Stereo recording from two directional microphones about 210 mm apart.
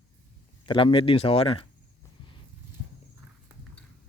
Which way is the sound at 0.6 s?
25° left (ahead or behind).